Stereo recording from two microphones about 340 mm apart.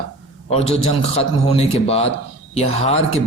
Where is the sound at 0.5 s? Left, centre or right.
Centre.